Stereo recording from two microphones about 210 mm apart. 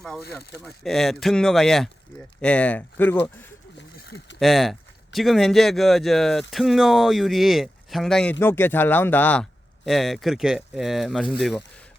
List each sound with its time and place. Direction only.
0.6 s speech: centre (ahead or behind)
3.9 s a sound: 50° left (ahead or behind)
4.4 s speech: centre (ahead or behind)